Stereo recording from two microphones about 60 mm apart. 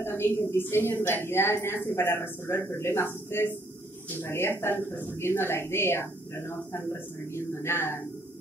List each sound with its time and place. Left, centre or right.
0.0 s a woman's voice: left